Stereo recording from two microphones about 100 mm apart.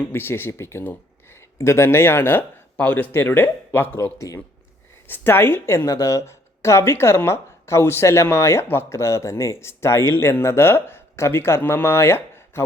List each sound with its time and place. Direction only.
0.1 s a woman's voice: 20° left (ahead or behind)
4.0 s speech: 35° left (ahead or behind)
5.0 s a woman's voice: 20° left (ahead or behind)